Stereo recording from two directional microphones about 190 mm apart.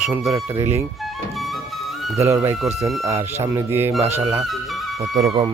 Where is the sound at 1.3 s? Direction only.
Centre (ahead or behind).